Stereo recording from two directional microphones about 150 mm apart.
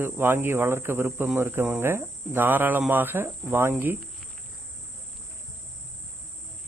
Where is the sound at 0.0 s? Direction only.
15° right (ahead or behind).